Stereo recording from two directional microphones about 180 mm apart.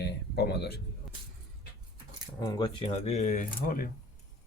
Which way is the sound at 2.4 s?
25° left (ahead or behind).